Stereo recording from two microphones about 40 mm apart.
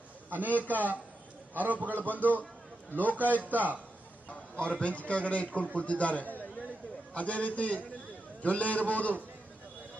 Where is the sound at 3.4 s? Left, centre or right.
Right.